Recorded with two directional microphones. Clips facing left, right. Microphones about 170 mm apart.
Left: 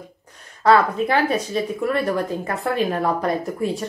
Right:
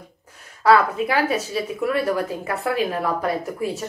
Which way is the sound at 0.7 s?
5° right (ahead or behind).